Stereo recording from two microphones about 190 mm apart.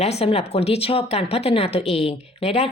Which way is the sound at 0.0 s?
35° left (ahead or behind).